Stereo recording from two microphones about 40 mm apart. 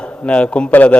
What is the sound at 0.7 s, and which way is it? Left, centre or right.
Speech, left.